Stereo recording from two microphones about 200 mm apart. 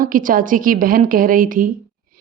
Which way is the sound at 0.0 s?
45° right (ahead or behind).